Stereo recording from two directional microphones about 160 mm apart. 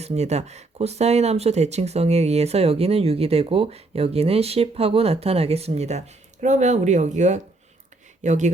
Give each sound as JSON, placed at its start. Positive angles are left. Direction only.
{"t": 0.0, "sound": "speech", "side_deg": -45}